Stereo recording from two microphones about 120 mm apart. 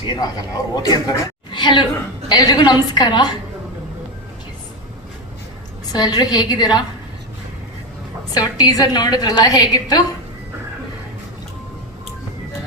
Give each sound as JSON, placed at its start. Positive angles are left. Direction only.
{"t": 0.0, "sound": "a man's voice", "side_deg": 35}
{"t": 5.9, "sound": "a woman's voice", "side_deg": 35}
{"t": 8.3, "sound": "a woman's voice", "side_deg": 35}